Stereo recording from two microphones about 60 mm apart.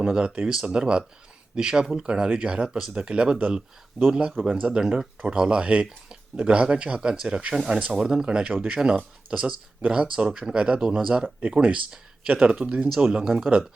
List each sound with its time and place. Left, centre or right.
0.0 s speech: centre
2.6 s speech: centre
2.9 s speech: centre